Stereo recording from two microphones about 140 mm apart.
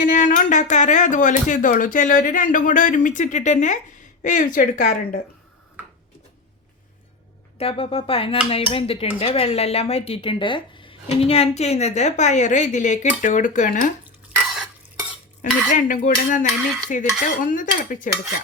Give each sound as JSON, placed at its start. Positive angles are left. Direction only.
{"t": 0.0, "sound": "speech", "side_deg": 65}
{"t": 7.6, "sound": "speech", "side_deg": 45}
{"t": 15.4, "sound": "speech", "side_deg": 65}